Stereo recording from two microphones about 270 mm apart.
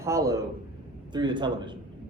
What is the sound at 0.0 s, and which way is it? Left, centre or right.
A man's voice, centre.